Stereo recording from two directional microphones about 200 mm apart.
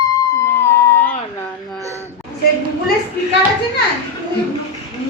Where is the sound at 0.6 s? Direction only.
15° left (ahead or behind).